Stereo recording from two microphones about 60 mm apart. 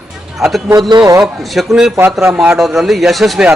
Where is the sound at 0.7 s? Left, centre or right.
Right.